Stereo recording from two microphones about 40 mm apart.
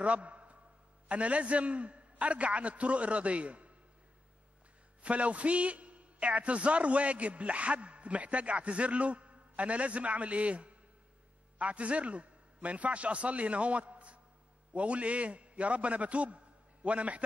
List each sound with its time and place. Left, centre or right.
0.0 s a sound: right
1.0 s a man's voice: right
5.0 s a man's voice: right